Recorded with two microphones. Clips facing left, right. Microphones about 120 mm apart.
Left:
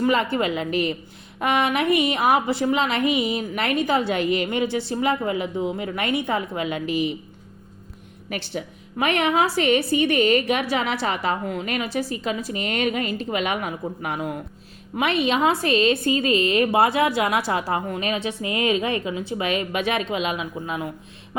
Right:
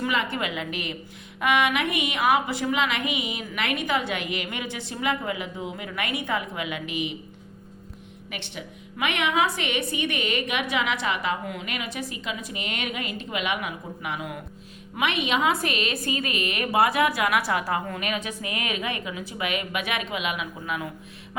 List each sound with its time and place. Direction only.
0.0 s a woman's voice: 35° left (ahead or behind)
8.3 s a woman's voice: 40° left (ahead or behind)